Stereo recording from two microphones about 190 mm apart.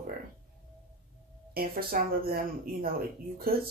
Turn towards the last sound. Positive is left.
turn(degrees=-50)  # may be behind; listen again after turning